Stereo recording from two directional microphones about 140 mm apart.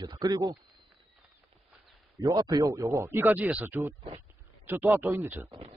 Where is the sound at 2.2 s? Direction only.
25° right (ahead or behind).